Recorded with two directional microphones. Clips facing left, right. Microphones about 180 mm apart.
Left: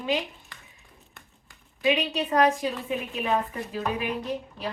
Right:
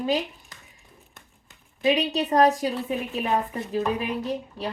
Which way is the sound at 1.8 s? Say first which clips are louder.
Right 2 dB; 40° right (ahead or behind).